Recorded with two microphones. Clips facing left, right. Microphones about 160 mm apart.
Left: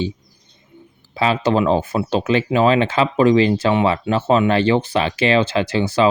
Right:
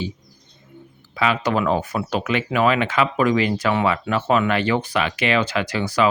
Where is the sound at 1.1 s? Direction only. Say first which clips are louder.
Left 3 dB; 30° left (ahead or behind).